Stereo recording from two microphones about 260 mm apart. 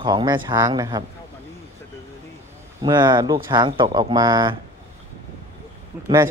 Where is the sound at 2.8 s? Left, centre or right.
Centre.